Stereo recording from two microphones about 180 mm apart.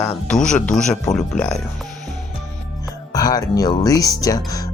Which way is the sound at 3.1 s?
20° left (ahead or behind).